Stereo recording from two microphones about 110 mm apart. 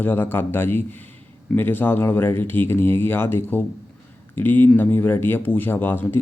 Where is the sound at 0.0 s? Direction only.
20° left (ahead or behind).